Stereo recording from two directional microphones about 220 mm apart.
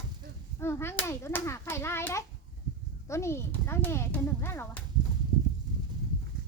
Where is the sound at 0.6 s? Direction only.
10° left (ahead or behind).